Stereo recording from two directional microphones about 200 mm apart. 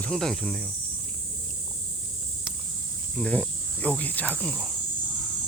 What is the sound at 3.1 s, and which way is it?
Speech, 5° left (ahead or behind).